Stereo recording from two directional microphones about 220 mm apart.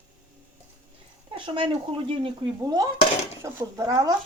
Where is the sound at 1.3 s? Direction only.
25° right (ahead or behind).